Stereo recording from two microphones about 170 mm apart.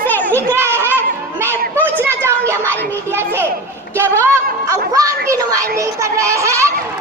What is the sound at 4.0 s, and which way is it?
A child's voice, 15° right (ahead or behind).